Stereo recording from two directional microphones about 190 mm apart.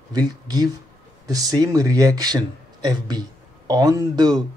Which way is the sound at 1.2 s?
20° right (ahead or behind).